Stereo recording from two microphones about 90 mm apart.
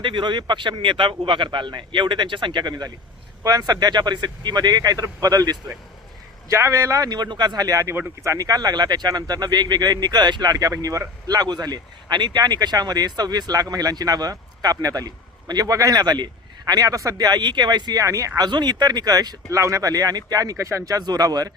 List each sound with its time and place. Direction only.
0.0 s speech: 60° right (ahead or behind)
18.0 s speech: 35° right (ahead or behind)
18.4 s speech: 50° right (ahead or behind)